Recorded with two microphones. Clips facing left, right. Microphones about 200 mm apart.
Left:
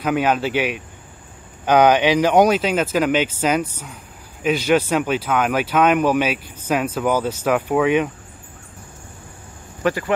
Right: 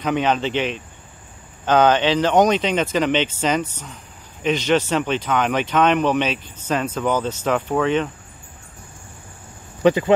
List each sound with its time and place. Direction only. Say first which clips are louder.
0.0 s speech: left 1 dB; 5° left (ahead or behind)
9.8 s speech: right 5 dB; 20° right (ahead or behind)